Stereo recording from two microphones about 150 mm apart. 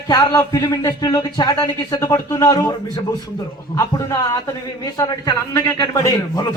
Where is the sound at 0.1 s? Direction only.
25° left (ahead or behind).